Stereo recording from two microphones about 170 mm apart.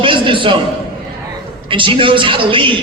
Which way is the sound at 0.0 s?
30° right (ahead or behind).